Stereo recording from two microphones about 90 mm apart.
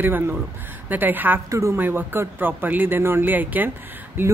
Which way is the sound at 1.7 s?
20° right (ahead or behind).